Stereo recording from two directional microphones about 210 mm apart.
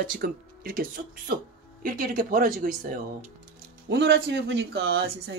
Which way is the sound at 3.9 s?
55° right (ahead or behind).